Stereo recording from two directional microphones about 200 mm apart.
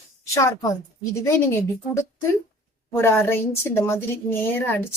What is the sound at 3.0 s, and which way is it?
Speech, 10° left (ahead or behind).